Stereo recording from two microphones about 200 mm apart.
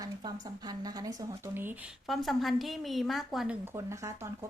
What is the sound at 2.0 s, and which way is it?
A woman's voice, centre (ahead or behind).